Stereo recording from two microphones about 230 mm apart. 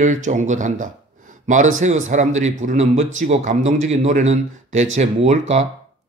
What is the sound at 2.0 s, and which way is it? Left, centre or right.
Speech, right.